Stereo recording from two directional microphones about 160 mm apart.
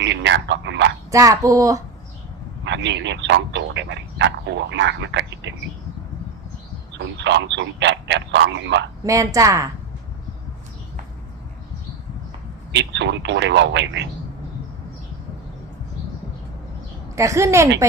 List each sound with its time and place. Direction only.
0.1 s a sound: 90° right
1.1 s speech: 20° right (ahead or behind)
2.6 s a man's voice: 90° right
6.9 s speech: 90° right
9.0 s speech: 20° right (ahead or behind)
12.7 s speech: 90° right
17.2 s a woman's voice: 20° right (ahead or behind)